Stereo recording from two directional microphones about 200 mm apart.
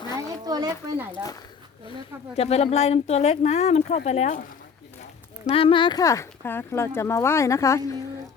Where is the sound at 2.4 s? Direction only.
30° left (ahead or behind).